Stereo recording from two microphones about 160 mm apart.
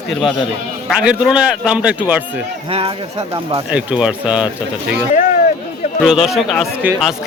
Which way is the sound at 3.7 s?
10° right (ahead or behind).